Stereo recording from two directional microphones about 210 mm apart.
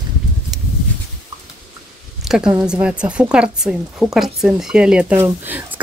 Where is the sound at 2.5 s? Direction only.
10° right (ahead or behind).